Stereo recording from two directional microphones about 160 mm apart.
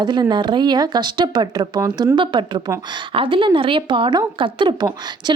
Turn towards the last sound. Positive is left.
turn(degrees=-25)  # may be behind; listen again after turning